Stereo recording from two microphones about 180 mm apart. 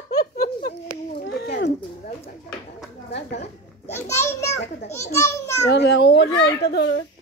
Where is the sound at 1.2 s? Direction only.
70° left (ahead or behind).